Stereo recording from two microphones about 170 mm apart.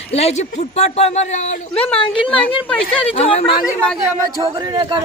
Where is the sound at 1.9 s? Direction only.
30° left (ahead or behind).